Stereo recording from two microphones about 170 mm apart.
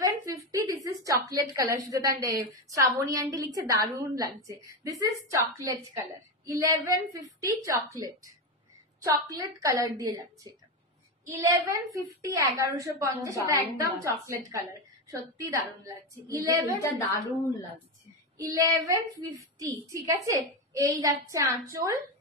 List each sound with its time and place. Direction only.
0.0 s a sound: 20° right (ahead or behind)
0.8 s a woman's voice: 20° right (ahead or behind)
6.4 s speech: 15° right (ahead or behind)
9.0 s a woman's voice: 20° right (ahead or behind)
16.7 s a woman's voice: 15° left (ahead or behind)
18.4 s a woman's voice: 20° right (ahead or behind)